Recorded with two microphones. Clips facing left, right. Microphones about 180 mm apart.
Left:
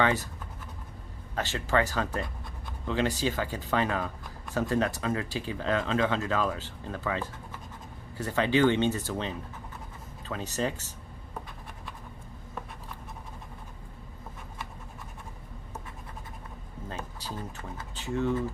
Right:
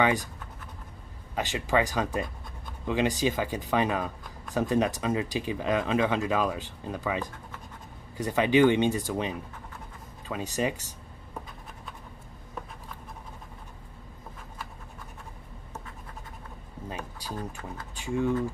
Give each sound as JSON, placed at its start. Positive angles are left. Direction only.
{"t": 0.0, "sound": "speech", "side_deg": -15}
{"t": 1.3, "sound": "speech", "side_deg": -15}
{"t": 16.9, "sound": "a sound", "side_deg": -10}
{"t": 17.9, "sound": "speech", "side_deg": -10}